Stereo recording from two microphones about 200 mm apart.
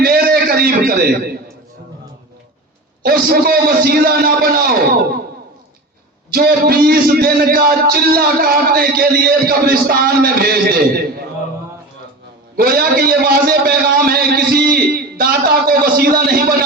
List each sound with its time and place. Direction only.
0.0 s a man's voice: 50° right (ahead or behind)
3.0 s a man's voice: 50° right (ahead or behind)
6.3 s a man's voice: 50° right (ahead or behind)
12.5 s a man's voice: 50° right (ahead or behind)